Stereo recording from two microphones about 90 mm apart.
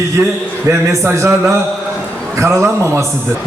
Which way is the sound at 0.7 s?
35° right (ahead or behind).